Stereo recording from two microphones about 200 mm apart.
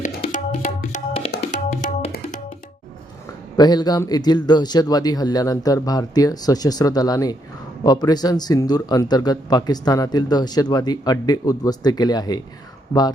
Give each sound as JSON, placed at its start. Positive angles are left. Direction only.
{"t": 0.0, "sound": "tabla", "side_deg": 40}
{"t": 3.6, "sound": "speech", "side_deg": 20}